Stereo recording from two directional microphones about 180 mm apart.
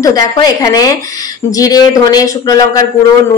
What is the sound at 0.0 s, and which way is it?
Speech, 20° left (ahead or behind).